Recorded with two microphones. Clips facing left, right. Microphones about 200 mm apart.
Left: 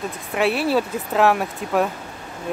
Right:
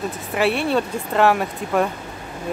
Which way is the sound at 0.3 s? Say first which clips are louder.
Even; centre (ahead or behind).